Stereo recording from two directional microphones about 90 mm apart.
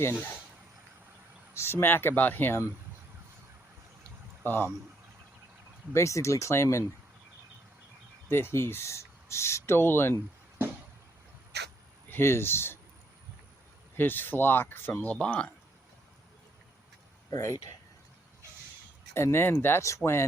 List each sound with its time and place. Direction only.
1.5 s speech: 25° left (ahead or behind)
4.4 s speech: 20° left (ahead or behind)
5.9 s speech: 35° left (ahead or behind)
8.3 s speech: 25° left (ahead or behind)
12.0 s speech: 25° left (ahead or behind)
13.9 s speech: 20° left (ahead or behind)
17.3 s speech: 35° left (ahead or behind)
19.1 s speech: 30° left (ahead or behind)